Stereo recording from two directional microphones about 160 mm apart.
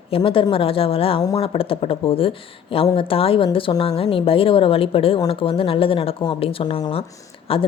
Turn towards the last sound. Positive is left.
turn(degrees=35)  # may be behind; listen again after turning